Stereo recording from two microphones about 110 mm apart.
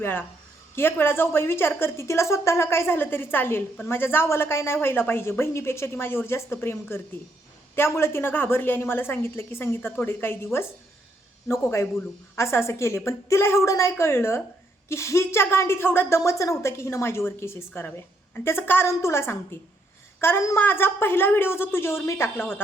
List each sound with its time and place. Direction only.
0.0 s a woman's voice: 20° left (ahead or behind)